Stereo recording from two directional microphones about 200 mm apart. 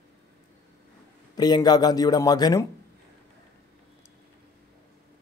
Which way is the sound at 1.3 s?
20° left (ahead or behind).